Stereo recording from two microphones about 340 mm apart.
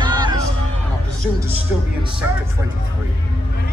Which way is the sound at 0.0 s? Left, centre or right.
Centre.